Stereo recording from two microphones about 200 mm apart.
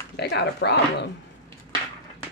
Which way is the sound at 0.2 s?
60° left (ahead or behind).